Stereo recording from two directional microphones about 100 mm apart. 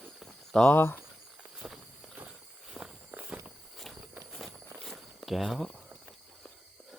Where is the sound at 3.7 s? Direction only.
Centre (ahead or behind).